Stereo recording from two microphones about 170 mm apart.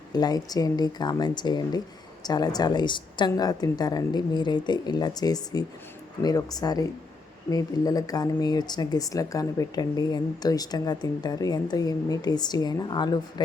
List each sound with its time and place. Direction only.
0.1 s speech: 25° left (ahead or behind)